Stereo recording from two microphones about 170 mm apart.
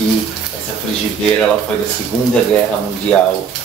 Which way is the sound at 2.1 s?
10° left (ahead or behind).